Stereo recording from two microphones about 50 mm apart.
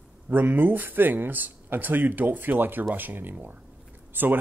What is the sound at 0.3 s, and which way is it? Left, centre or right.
Speech, right.